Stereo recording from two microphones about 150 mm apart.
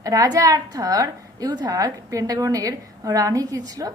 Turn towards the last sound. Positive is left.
turn(degrees=-25)  # may be behind; listen again after turning